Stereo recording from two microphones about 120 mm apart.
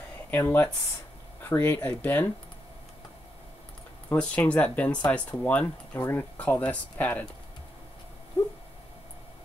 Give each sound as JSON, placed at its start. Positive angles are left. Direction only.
{"t": 0.3, "sound": "speech", "side_deg": 15}
{"t": 4.1, "sound": "speech", "side_deg": 10}